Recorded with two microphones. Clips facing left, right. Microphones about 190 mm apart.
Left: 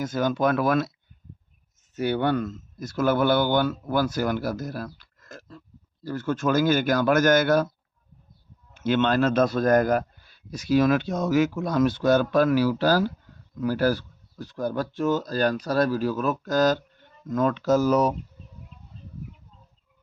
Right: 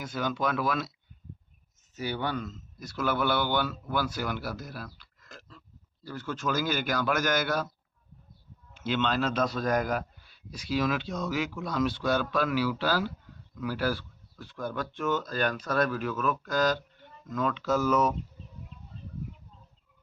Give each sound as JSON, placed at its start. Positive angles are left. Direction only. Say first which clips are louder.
{"t": 0.0, "sound": "speech", "louder": "left 7 dB", "side_deg": 45}
{"t": 2.0, "sound": "speech", "louder": "left 8 dB", "side_deg": 60}
{"t": 8.7, "sound": "speech", "louder": "left 7 dB", "side_deg": 50}